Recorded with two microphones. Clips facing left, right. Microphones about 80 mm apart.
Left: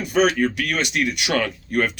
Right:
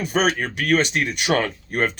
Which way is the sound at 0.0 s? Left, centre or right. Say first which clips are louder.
Left 3 dB; right.